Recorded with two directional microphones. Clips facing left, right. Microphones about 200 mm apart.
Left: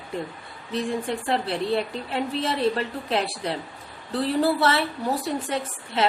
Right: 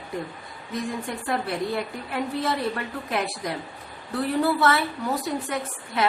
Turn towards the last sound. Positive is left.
turn(degrees=25)  # may be behind; listen again after turning